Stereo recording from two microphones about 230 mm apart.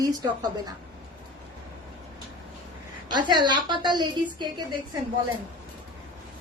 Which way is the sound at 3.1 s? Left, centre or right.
Centre.